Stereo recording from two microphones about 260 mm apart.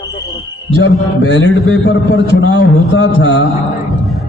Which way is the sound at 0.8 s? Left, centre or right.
Left.